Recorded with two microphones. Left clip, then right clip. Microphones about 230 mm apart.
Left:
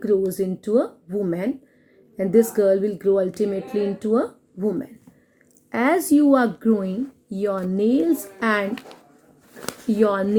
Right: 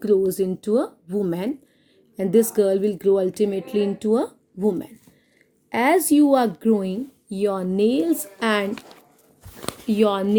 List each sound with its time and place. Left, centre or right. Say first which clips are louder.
0.3 s a woman's voice: right 1 dB; right
9.9 s speech: even; right